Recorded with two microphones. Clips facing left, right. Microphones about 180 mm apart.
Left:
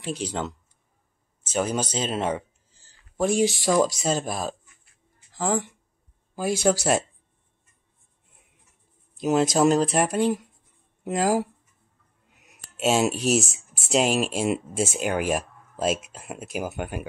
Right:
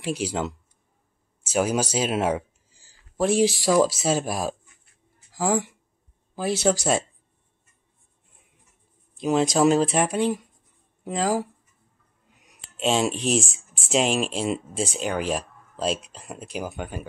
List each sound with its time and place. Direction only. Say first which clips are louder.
0.0 s speech: right 2 dB; 10° right (ahead or behind)
9.2 s speech: even; 5° left (ahead or behind)
12.7 s speech: left 1 dB; 5° left (ahead or behind)